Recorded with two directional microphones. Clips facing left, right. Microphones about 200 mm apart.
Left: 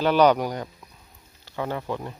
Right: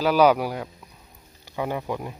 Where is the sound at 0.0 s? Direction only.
5° right (ahead or behind).